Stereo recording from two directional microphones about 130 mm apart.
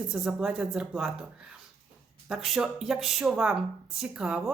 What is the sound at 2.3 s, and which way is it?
Speech, 5° right (ahead or behind).